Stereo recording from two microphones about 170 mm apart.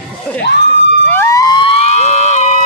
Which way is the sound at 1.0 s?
15° left (ahead or behind).